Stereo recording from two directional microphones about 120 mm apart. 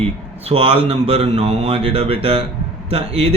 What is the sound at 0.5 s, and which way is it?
Speech, 50° right (ahead or behind).